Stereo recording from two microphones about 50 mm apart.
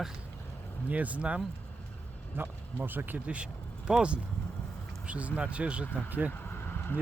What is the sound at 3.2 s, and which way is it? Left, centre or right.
Speech, right.